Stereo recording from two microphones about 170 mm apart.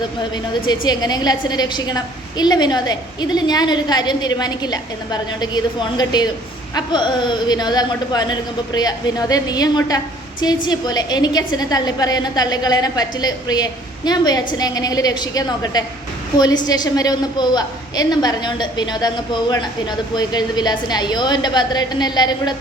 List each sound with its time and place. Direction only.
0.6 s a woman's voice: 25° left (ahead or behind)